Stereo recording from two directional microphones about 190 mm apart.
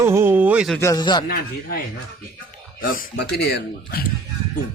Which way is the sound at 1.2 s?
50° left (ahead or behind).